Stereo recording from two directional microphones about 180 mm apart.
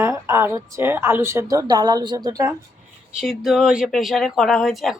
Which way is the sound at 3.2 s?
Centre (ahead or behind).